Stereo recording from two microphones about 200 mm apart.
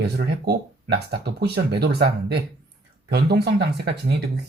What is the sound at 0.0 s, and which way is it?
Speech, 55° right (ahead or behind).